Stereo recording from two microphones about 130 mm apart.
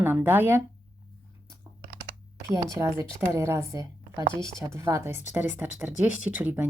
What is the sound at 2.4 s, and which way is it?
A woman's voice, 20° right (ahead or behind).